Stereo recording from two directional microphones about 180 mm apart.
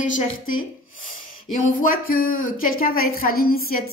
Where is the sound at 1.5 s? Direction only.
50° left (ahead or behind).